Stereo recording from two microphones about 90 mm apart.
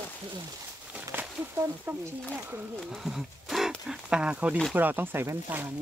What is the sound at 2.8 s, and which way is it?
Speech, 5° right (ahead or behind).